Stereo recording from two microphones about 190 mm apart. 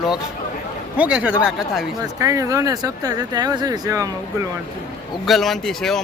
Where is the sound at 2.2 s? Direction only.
15° right (ahead or behind).